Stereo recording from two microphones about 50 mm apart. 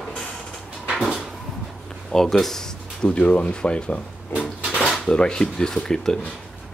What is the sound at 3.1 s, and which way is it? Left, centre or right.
Speech, left.